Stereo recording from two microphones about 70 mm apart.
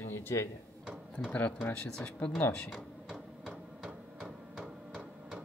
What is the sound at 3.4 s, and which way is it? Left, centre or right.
Hammer, centre.